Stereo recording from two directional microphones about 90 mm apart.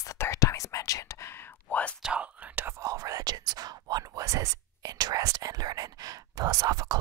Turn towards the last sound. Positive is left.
turn(degrees=-45)  # may be behind; listen again after turning